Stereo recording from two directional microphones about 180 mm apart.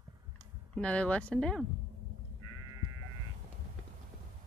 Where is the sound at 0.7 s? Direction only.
5° left (ahead or behind).